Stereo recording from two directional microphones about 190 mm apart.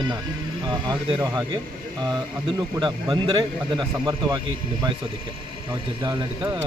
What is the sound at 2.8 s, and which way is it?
Speech, 25° right (ahead or behind).